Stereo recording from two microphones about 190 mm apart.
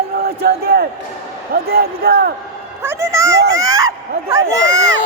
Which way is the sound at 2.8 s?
15° right (ahead or behind).